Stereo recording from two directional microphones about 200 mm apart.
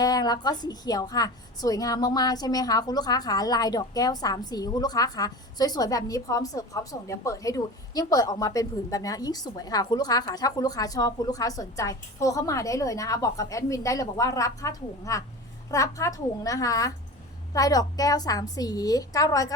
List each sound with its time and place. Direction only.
0.0 s a woman's voice: 20° left (ahead or behind)